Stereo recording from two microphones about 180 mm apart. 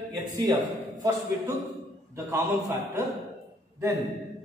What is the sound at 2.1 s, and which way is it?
Speech, 20° right (ahead or behind).